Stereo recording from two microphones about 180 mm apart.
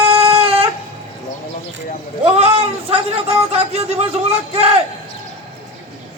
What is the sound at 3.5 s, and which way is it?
Music, 35° right (ahead or behind).